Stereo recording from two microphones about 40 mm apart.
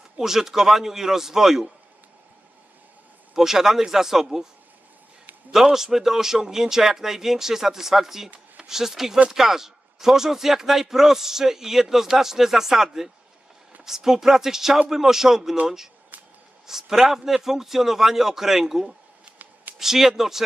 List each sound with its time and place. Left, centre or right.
0.2 s speech: centre
3.3 s speech: centre
5.5 s speech: centre
16.1 s a sound: right
16.6 s speech: centre